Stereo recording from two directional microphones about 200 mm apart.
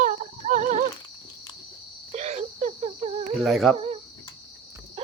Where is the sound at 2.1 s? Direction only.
35° right (ahead or behind).